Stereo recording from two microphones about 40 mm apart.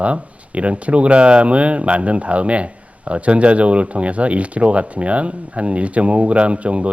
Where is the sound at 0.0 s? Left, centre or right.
Right.